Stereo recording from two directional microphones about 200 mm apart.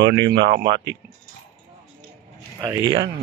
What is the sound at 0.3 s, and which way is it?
Speech, 55° right (ahead or behind).